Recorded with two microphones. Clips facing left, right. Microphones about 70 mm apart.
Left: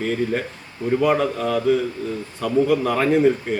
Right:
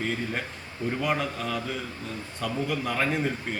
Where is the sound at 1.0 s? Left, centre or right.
Centre.